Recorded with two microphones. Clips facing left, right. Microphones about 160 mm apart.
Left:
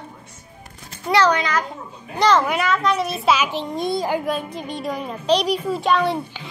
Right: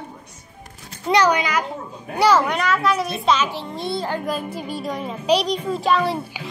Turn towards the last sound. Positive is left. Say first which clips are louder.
# left 1 dB
turn(degrees=0)  # may be behind; listen again after turning